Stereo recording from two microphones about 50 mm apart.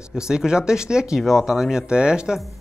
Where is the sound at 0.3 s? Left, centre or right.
Centre.